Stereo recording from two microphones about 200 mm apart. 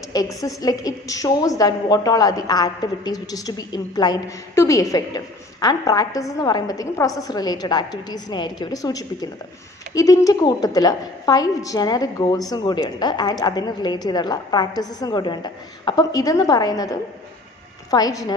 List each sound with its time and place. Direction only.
0.1 s a woman's voice: 20° left (ahead or behind)